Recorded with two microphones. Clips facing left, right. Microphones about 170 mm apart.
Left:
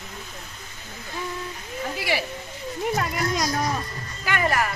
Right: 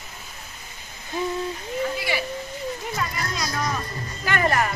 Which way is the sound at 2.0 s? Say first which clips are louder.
Even; 90° left.